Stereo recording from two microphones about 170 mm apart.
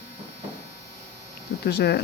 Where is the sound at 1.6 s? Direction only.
70° left (ahead or behind).